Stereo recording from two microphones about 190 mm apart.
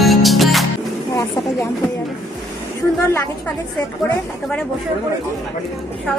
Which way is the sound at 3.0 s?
10° left (ahead or behind).